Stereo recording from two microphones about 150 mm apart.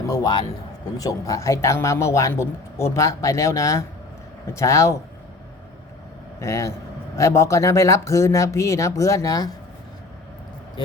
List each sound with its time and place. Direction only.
0.1 s a man's voice: 25° left (ahead or behind)
6.4 s a man's voice: 20° left (ahead or behind)
10.8 s speech: 30° left (ahead or behind)